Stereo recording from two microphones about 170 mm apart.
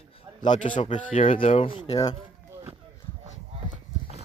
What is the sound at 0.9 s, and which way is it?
Speech, 45° left (ahead or behind).